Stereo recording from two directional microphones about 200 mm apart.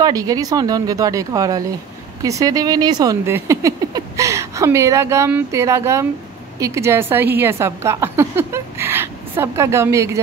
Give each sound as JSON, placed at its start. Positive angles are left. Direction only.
{"t": 0.0, "sound": "a woman's voice", "side_deg": -20}